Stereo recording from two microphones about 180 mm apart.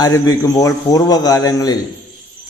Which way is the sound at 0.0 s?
20° left (ahead or behind).